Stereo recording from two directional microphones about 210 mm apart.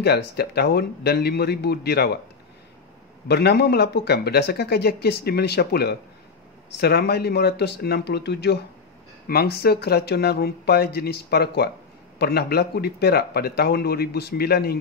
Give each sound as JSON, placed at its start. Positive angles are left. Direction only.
{"t": 0.0, "sound": "speech", "side_deg": 50}
{"t": 3.3, "sound": "speech", "side_deg": 50}